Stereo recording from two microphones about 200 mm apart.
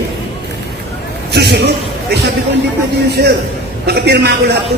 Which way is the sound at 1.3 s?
55° right (ahead or behind).